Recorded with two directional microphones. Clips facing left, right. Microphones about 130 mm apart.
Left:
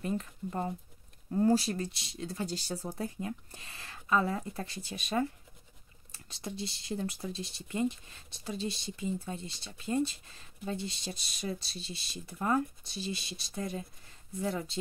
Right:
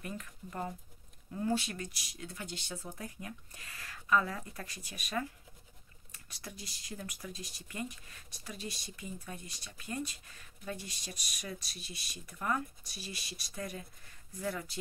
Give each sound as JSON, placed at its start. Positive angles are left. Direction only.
{"t": 0.0, "sound": "speech", "side_deg": 30}
{"t": 3.2, "sound": "speech", "side_deg": 25}